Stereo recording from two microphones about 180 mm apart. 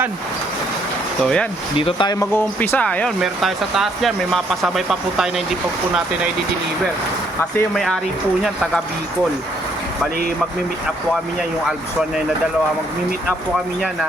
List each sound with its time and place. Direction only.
1.2 s speech: 5° left (ahead or behind)
1.7 s speech: 30° left (ahead or behind)
2.1 s speech: 10° left (ahead or behind)